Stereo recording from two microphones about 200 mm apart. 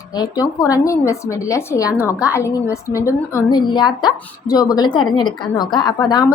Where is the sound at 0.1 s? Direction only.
20° left (ahead or behind).